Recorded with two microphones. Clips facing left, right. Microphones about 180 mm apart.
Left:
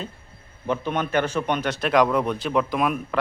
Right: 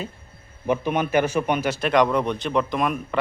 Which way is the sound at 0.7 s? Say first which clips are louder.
Right 3 dB; 10° right (ahead or behind).